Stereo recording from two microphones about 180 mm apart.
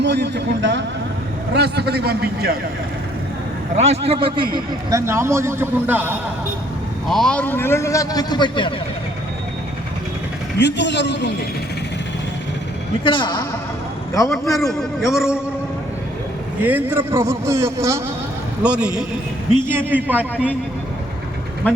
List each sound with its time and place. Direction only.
0.0 s a man's voice: 70° right (ahead or behind)
1.5 s a man's voice: 65° right (ahead or behind)
3.8 s a man's voice: 35° right (ahead or behind)
4.5 s a man's voice: 20° right (ahead or behind)
7.1 s a man's voice: 5° left (ahead or behind); by 8.7 s 25° left (ahead or behind)
10.6 s a man's voice: 75° left (ahead or behind)
13.1 s a man's voice: 25° left (ahead or behind)
14.3 s a man's voice: centre (ahead or behind)
16.6 s a man's voice: 10° right (ahead or behind)
21.6 s a man's voice: 10° left (ahead or behind)